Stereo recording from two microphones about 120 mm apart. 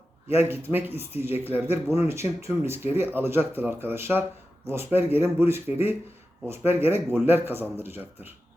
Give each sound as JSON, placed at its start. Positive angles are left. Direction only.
{"t": 0.3, "sound": "speech", "side_deg": -20}